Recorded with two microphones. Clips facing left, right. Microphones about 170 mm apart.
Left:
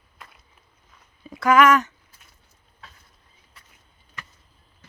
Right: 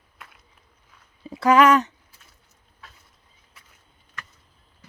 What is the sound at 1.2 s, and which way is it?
Speech, 30° right (ahead or behind).